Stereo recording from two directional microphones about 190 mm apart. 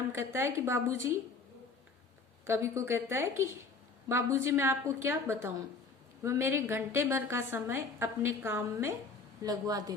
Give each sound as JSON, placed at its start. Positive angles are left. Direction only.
{"t": 0.1, "sound": "a woman's voice", "side_deg": -15}
{"t": 2.5, "sound": "a woman's voice", "side_deg": -15}